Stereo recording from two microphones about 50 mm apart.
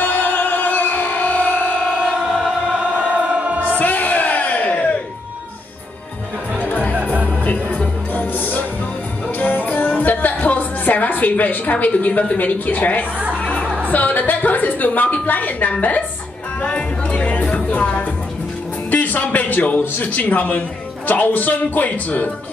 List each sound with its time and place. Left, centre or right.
0.0 s music: left
3.2 s music: right
3.6 s music: left
6.6 s music: left
6.9 s music: right
7.4 s music: left
8.1 s music: left
13.8 s a woman's voice: left
16.6 s a woman's voice: left
18.9 s music: left
19.8 s a woman's voice: left